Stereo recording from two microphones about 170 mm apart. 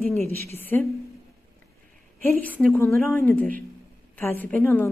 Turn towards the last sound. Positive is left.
turn(degrees=10)  # may be behind; listen again after turning